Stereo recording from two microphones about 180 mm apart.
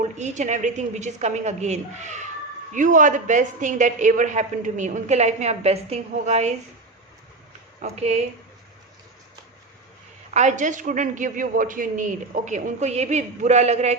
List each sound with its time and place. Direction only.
0.0 s a woman's voice: 40° right (ahead or behind)
7.8 s a woman's voice: 40° right (ahead or behind)
10.3 s a woman's voice: 40° right (ahead or behind)